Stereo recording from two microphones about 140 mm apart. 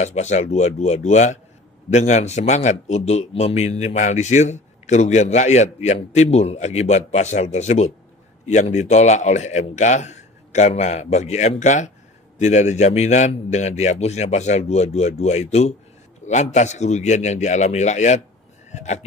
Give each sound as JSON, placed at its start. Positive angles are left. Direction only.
{"t": 0.0, "sound": "a man's voice", "side_deg": 55}